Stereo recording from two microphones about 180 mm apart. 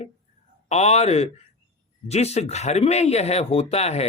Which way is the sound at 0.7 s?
35° left (ahead or behind).